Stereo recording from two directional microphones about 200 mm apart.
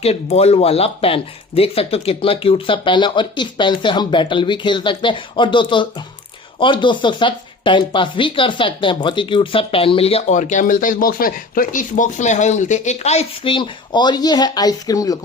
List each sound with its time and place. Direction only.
0.0 s speech: 30° left (ahead or behind)